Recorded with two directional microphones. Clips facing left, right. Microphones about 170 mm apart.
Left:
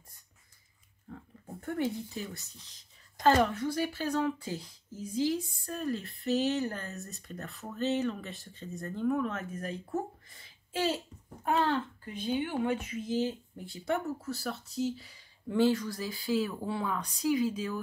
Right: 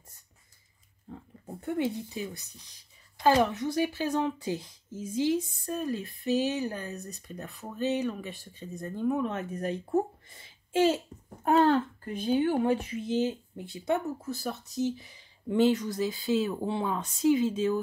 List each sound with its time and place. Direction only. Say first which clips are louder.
1.0 s speech: right 3 dB; 20° right (ahead or behind)
11.4 s speech: right 6 dB; 45° right (ahead or behind); by 17.7 s 25° right (ahead or behind)